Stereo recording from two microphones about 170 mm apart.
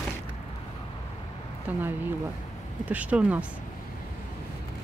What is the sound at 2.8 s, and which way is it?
Speech, 10° right (ahead or behind).